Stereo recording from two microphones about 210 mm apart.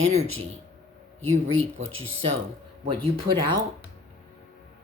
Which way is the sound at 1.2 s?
75° right (ahead or behind).